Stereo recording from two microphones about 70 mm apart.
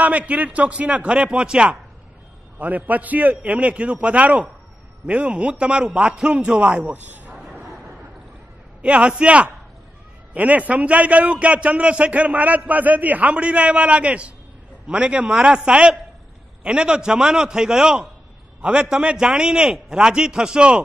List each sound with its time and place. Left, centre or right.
0.0 s a man's voice: right
6.7 s speech: right
7.3 s a sound: centre
8.8 s a man's voice: centre